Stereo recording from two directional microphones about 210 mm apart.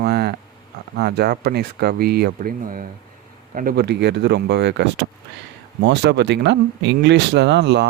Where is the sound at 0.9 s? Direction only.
50° right (ahead or behind).